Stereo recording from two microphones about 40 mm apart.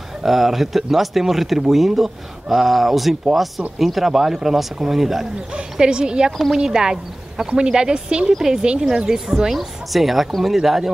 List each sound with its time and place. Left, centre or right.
0.2 s speech: centre
5.5 s speech: right
6.3 s speech: centre
6.6 s speech: centre
8.4 s speech: centre
8.6 s speech: centre
9.5 s speech: centre